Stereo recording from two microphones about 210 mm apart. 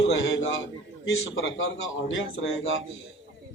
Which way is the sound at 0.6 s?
65° left (ahead or behind).